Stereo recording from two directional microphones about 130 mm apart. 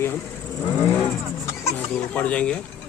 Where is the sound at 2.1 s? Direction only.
10° left (ahead or behind).